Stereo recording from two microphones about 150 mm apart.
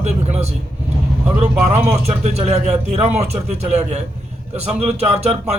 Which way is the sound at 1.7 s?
50° right (ahead or behind).